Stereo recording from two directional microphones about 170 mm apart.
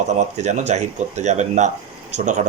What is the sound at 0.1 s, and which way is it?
Speech, 45° right (ahead or behind).